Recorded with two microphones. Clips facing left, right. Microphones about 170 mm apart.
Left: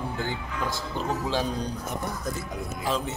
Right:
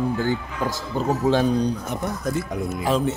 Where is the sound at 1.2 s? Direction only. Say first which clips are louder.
Right 11 dB; 55° right (ahead or behind).